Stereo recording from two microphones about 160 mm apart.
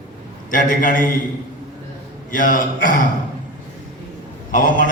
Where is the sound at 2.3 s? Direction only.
55° left (ahead or behind).